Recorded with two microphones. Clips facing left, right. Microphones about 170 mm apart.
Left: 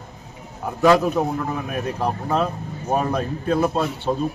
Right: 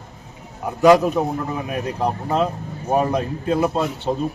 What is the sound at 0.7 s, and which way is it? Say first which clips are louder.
Speech: right 3 dB; 15° right (ahead or behind).